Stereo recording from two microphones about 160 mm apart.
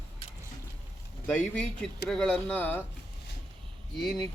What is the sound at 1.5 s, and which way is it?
A man's voice, 5° left (ahead or behind).